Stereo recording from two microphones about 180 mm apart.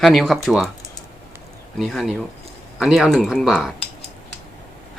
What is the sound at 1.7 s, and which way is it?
Speech, centre (ahead or behind).